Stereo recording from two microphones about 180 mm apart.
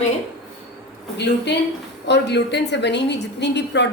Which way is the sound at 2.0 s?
70° left (ahead or behind).